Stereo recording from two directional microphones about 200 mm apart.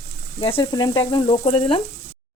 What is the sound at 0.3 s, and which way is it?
Frying, 25° left (ahead or behind).